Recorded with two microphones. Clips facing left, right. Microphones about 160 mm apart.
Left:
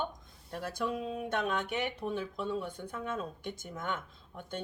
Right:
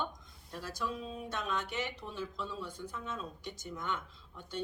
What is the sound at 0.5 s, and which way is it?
A woman's voice, 55° left (ahead or behind).